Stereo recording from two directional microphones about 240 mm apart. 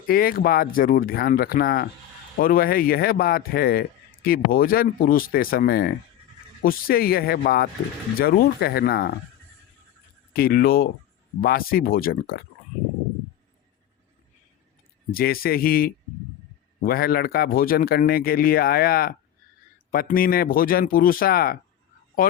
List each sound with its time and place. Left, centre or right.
0.1 s speech: left
10.3 s speech: left
15.1 s speech: left